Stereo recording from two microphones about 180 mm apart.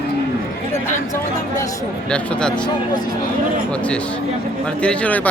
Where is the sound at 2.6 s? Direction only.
20° left (ahead or behind).